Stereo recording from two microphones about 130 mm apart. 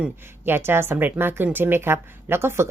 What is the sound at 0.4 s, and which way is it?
Speech, 15° right (ahead or behind).